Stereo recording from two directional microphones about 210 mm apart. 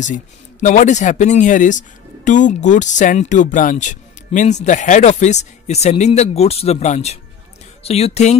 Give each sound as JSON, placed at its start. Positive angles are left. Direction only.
{"t": 0.0, "sound": "speech", "side_deg": 35}